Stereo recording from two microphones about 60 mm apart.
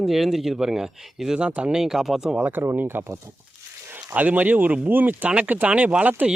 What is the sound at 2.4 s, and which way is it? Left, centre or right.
Speech, right.